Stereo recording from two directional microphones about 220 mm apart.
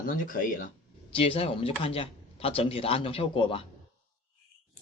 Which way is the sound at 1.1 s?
25° left (ahead or behind).